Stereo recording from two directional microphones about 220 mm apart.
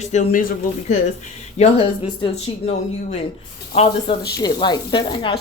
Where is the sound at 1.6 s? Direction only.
25° left (ahead or behind).